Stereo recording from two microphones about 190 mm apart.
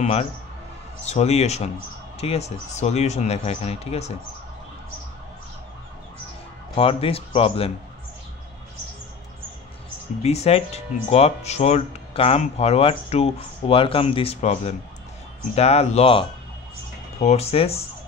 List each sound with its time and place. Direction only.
0.0 s speech: 35° left (ahead or behind)
6.7 s speech: 30° left (ahead or behind)
10.2 s speech: 35° left (ahead or behind)